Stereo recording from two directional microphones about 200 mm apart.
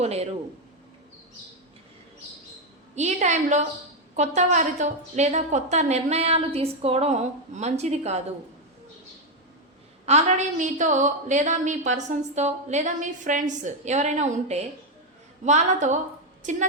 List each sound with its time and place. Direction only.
0.0 s a woman's voice: 30° right (ahead or behind)
2.9 s a woman's voice: 35° right (ahead or behind)
10.1 s a woman's voice: 35° right (ahead or behind)